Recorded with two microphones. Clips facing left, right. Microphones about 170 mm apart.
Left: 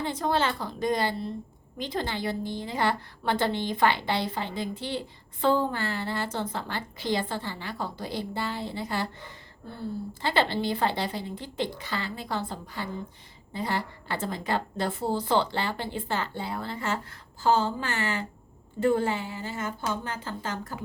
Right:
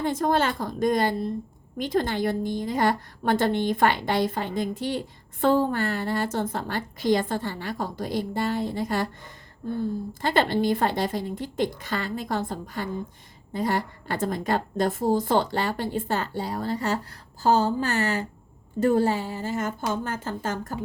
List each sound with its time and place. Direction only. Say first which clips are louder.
0.0 s a woman's voice: right 4 dB; 50° right (ahead or behind)
10.2 s a woman's voice: right 3 dB; 45° right (ahead or behind)